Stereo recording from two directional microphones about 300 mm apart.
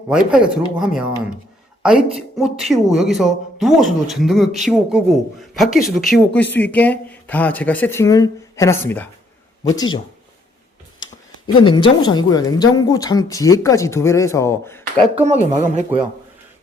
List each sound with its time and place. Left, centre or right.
0.1 s speech: centre
11.6 s speech: centre
15.1 s speech: right